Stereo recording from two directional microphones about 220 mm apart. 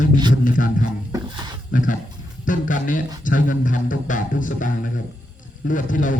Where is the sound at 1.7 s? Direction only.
35° left (ahead or behind).